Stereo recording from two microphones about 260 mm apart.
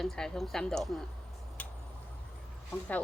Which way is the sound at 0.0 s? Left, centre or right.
Centre.